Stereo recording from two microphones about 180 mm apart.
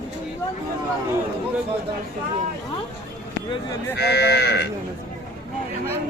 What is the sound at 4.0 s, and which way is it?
Speech, 65° left (ahead or behind).